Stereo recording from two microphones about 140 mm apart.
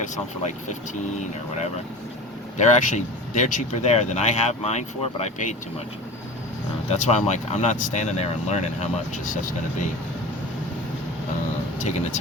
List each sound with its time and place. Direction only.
0.0 s speech: 60° left (ahead or behind)
2.6 s speech: 60° left (ahead or behind)
6.9 s speech: 55° left (ahead or behind)
11.8 s speech: 55° left (ahead or behind)